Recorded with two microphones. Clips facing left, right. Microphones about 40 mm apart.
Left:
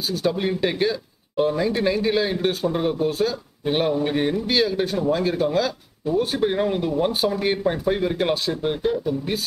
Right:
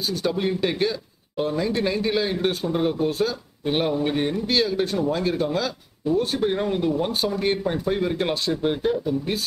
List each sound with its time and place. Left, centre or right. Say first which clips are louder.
0.1 s speech: left 2 dB; centre